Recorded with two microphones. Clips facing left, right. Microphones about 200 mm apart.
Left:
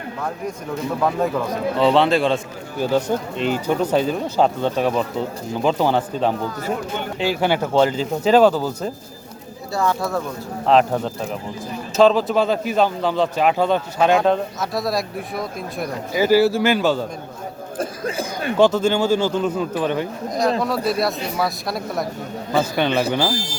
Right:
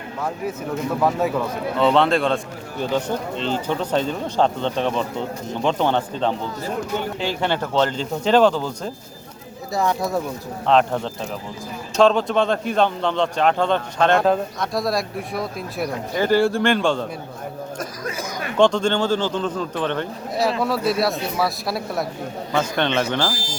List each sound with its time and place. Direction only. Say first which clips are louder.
1.8 s a man's voice: left 1 dB; centre (ahead or behind)
2.9 s a man's voice: left 3 dB; 10° left (ahead or behind)
9.7 s speech: even; 20° right (ahead or behind)
10.7 s a man's voice: left 2 dB; 5° left (ahead or behind)
17.7 s speech: left 9 dB; 30° left (ahead or behind)
18.5 s a man's voice: left 1 dB; 5° left (ahead or behind)